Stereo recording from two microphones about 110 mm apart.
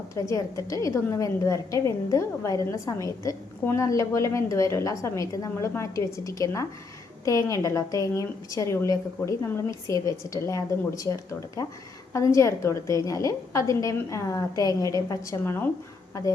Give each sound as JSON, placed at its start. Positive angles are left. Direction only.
{"t": 0.1, "sound": "a woman's voice", "side_deg": 30}